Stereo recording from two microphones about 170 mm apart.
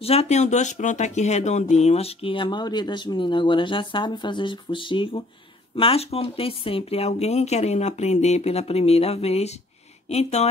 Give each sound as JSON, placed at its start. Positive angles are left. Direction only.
{"t": 0.0, "sound": "speech", "side_deg": 40}